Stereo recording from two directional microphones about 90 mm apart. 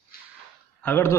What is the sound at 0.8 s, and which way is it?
Speech, 25° left (ahead or behind).